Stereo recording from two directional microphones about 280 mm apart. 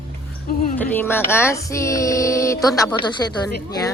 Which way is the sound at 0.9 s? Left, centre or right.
Centre.